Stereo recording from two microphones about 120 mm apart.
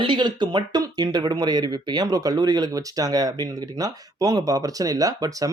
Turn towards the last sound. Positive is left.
turn(degrees=-30)  # may be behind; listen again after turning